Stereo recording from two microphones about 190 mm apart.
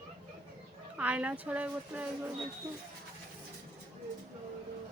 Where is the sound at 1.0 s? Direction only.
5° right (ahead or behind).